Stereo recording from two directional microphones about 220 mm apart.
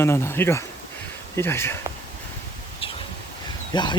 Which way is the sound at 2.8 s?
25° left (ahead or behind).